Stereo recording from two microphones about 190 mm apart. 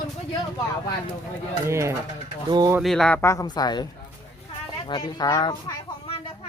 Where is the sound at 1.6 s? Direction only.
15° right (ahead or behind).